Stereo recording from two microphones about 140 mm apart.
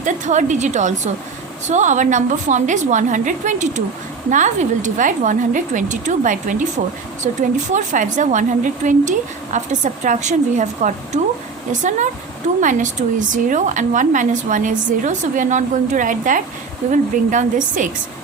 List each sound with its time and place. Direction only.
0.0 s speech: 60° right (ahead or behind)